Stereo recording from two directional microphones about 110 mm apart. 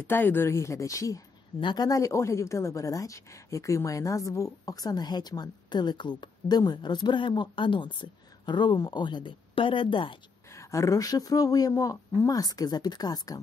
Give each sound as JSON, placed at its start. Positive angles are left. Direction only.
{"t": 0.0, "sound": "speech", "side_deg": 20}
{"t": 1.6, "sound": "a woman's voice", "side_deg": 40}
{"t": 10.5, "sound": "a woman's voice", "side_deg": 25}